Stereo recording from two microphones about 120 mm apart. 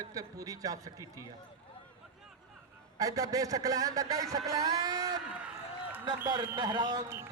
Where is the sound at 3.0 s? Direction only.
30° right (ahead or behind).